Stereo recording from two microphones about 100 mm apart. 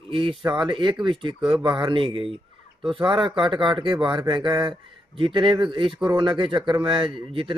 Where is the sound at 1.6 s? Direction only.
55° right (ahead or behind).